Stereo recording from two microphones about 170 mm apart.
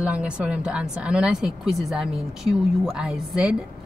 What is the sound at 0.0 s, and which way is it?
A woman's voice, 5° right (ahead or behind).